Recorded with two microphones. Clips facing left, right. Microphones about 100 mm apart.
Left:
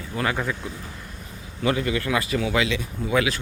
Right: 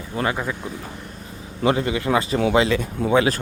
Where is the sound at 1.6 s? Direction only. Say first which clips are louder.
Right 3 dB; 25° right (ahead or behind).